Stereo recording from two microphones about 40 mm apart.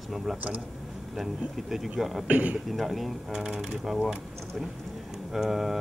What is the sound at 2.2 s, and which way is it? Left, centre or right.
Speech, right.